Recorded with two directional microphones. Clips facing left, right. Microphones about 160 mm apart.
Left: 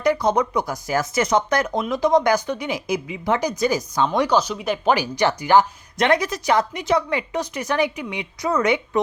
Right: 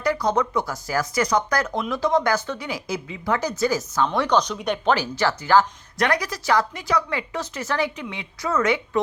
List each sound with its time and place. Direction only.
0.0 s a woman's voice: 20° left (ahead or behind)
4.3 s speech: 5° left (ahead or behind)
4.9 s a woman's voice: 15° left (ahead or behind)